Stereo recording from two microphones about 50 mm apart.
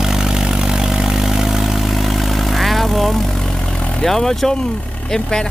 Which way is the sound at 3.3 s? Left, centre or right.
Centre.